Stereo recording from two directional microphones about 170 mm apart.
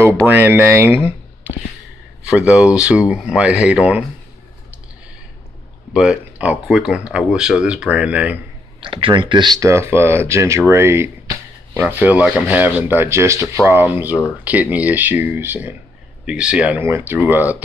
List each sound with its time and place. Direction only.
0.3 s speech: 10° right (ahead or behind)
2.2 s speech: 5° right (ahead or behind)
5.9 s speech: 5° right (ahead or behind)
8.8 s speech: 30° right (ahead or behind); by 17.6 s 10° right (ahead or behind)